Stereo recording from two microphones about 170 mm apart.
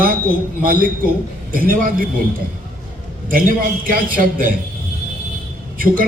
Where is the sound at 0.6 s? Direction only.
55° right (ahead or behind).